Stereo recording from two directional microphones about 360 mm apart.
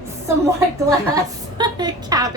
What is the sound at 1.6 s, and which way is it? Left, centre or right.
Speech, centre.